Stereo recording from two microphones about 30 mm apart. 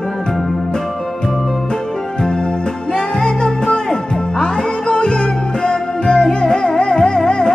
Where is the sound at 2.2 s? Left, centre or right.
Left.